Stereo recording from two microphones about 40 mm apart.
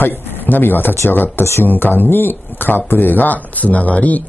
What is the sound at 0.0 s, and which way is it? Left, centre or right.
Speech, left.